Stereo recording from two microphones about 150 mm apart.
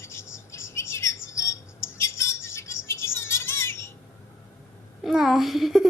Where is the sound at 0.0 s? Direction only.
15° left (ahead or behind).